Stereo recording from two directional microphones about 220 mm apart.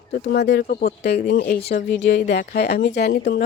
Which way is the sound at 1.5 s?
25° left (ahead or behind).